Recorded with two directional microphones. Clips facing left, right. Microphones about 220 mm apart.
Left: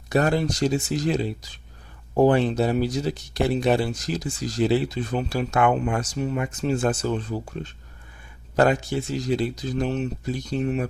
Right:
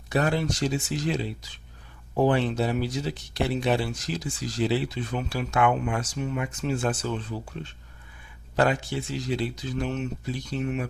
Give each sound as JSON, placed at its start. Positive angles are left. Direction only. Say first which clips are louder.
{"t": 0.1, "sound": "speech", "louder": "left 4 dB", "side_deg": 40}